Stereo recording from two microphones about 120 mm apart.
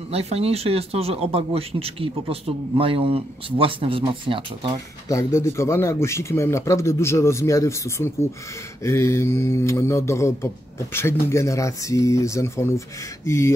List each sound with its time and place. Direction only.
0.1 s speech: 60° right (ahead or behind)
5.0 s speech: 25° left (ahead or behind)